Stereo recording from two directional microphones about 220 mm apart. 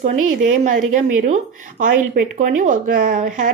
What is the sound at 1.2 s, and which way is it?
Speech, 35° right (ahead or behind).